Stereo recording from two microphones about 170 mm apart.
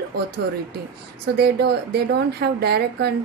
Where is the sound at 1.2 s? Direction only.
70° right (ahead or behind).